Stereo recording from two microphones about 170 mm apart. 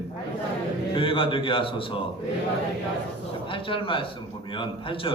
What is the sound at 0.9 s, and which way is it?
A man's voice, 30° left (ahead or behind).